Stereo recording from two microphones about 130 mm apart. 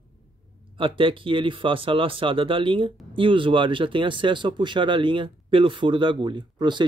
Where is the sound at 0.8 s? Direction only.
40° right (ahead or behind).